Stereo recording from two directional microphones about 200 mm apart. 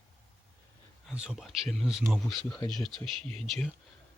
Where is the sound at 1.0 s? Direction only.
5° right (ahead or behind).